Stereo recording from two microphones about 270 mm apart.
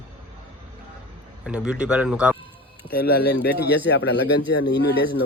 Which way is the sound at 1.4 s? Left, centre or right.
Centre.